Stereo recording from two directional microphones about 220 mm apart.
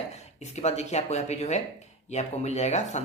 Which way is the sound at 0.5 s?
30° left (ahead or behind).